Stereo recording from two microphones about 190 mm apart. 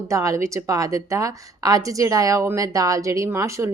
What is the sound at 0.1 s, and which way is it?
A woman's voice, 15° right (ahead or behind).